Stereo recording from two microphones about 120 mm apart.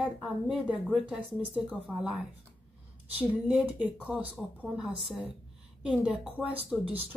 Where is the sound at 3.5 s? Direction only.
5° right (ahead or behind).